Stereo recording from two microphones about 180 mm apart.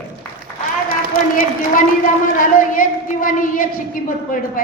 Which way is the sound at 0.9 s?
50° left (ahead or behind).